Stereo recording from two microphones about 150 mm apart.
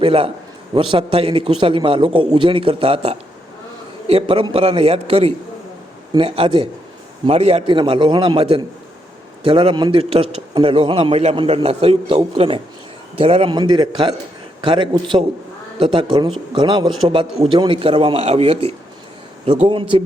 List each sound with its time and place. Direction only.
0.0 s a man's voice: 40° right (ahead or behind)